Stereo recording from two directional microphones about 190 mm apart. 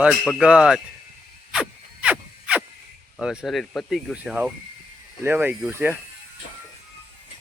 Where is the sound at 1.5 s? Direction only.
5° right (ahead or behind).